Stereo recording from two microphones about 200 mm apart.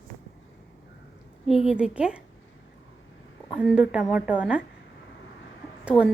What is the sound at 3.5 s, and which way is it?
A woman's voice, 5° right (ahead or behind).